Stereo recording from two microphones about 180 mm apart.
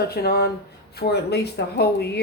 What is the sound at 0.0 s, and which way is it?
Speech, 60° left (ahead or behind).